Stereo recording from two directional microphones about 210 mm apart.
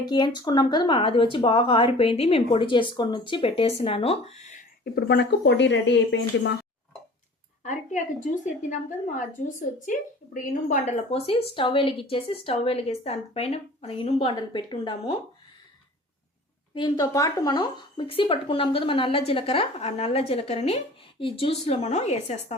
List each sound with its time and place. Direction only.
0.1 s speech: 20° left (ahead or behind)
4.8 s speech: 50° left (ahead or behind)
7.6 s a woman's voice: 35° left (ahead or behind)
16.7 s speech: 20° left (ahead or behind)